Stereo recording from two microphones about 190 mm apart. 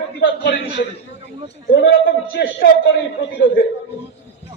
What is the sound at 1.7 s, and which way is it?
Speech, 55° left (ahead or behind).